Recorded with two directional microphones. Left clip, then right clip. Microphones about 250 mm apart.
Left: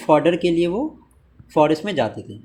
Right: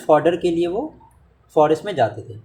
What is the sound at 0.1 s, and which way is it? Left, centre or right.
Speech, centre.